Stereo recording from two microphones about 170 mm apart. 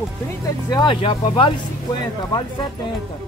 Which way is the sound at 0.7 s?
25° left (ahead or behind).